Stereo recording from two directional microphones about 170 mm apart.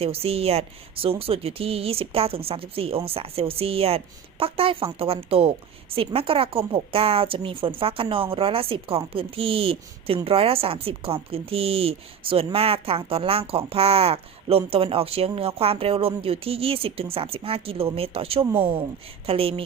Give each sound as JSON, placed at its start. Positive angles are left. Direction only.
{"t": 0.0, "sound": "speech", "side_deg": -35}